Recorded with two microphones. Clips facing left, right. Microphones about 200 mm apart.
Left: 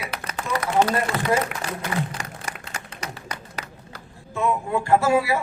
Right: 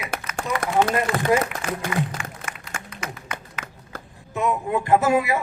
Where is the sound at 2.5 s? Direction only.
35° left (ahead or behind).